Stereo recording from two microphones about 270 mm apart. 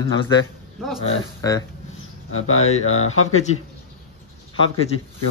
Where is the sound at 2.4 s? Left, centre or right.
Left.